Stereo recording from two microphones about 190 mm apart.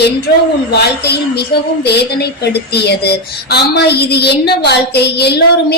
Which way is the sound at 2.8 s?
60° left (ahead or behind).